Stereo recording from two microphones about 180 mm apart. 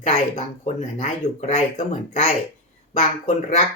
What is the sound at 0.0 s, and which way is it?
Speech, 40° left (ahead or behind).